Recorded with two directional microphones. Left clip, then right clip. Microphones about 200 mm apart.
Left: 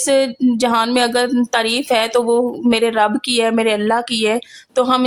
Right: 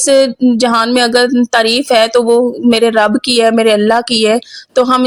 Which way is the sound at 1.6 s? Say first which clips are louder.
Right 8 dB; 25° right (ahead or behind).